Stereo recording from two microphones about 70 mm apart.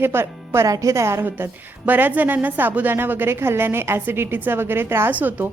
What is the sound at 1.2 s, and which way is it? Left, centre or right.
A woman's voice, right.